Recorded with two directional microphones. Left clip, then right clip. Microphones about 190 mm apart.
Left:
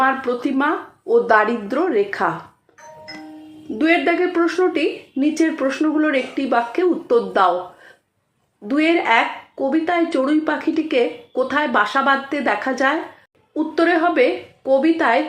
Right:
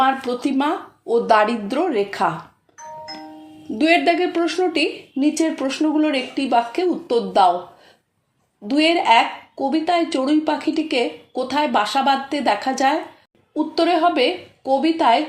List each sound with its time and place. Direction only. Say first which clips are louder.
0.0 s speech: even; 30° right (ahead or behind)
3.8 s speech: right 1 dB; 25° right (ahead or behind)
8.6 s speech: right 1 dB; 20° right (ahead or behind)